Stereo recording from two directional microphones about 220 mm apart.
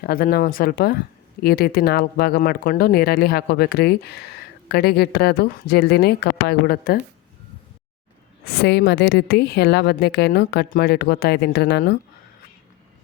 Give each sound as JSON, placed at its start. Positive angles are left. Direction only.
{"t": 0.0, "sound": "speech", "side_deg": 45}
{"t": 8.6, "sound": "speech", "side_deg": 50}